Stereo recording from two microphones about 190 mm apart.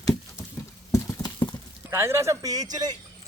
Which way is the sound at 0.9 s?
15° left (ahead or behind).